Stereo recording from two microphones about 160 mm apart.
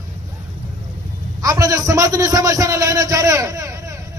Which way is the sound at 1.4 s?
20° right (ahead or behind).